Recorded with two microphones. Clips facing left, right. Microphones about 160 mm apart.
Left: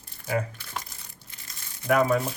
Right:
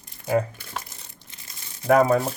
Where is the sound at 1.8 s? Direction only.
35° right (ahead or behind).